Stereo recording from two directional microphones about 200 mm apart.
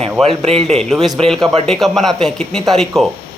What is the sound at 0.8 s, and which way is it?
A man's voice, centre (ahead or behind).